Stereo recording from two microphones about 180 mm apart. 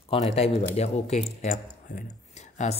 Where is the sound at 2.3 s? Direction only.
40° left (ahead or behind).